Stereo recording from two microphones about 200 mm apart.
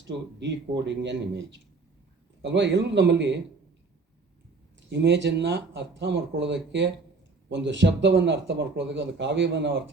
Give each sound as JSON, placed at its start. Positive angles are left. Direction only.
{"t": 0.0, "sound": "speech", "side_deg": -60}
{"t": 4.9, "sound": "speech", "side_deg": -60}